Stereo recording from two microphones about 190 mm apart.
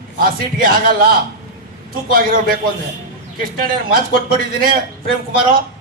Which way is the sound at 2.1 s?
50° right (ahead or behind).